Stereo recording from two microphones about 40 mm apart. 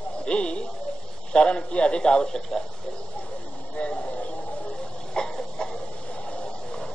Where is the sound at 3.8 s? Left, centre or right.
Left.